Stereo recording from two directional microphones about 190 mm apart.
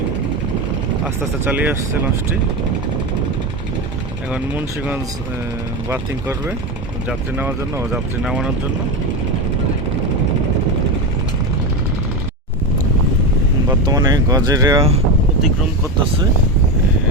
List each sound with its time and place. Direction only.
1.0 s speech: 10° right (ahead or behind)
4.3 s speech: 10° right (ahead or behind)
7.1 s speech: 10° right (ahead or behind)
13.7 s speech: 20° right (ahead or behind)